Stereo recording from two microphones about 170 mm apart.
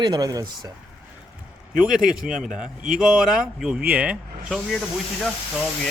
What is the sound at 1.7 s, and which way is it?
A man's voice, 5° right (ahead or behind).